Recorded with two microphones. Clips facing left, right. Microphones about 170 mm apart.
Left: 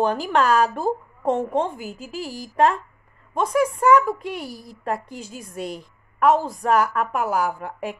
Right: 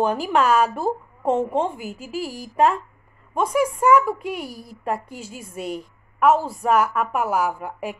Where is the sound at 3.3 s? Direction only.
10° right (ahead or behind).